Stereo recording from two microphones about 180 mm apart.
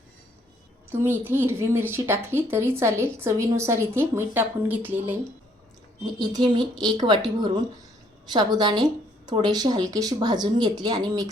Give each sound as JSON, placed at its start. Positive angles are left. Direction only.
{"t": 0.9, "sound": "a woman's voice", "side_deg": -10}
{"t": 6.1, "sound": "speech", "side_deg": -20}